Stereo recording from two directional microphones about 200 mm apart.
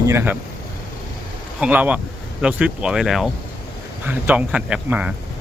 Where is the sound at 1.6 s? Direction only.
5° right (ahead or behind).